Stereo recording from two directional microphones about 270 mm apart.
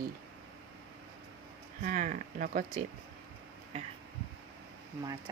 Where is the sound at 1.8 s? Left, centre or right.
Right.